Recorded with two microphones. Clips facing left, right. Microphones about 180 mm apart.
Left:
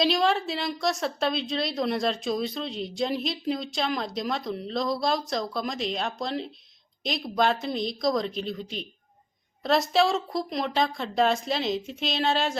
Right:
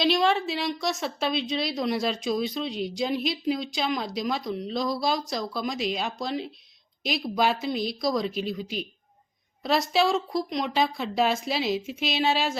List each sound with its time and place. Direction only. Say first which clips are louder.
0.0 s a woman's voice: right 1 dB; centre (ahead or behind)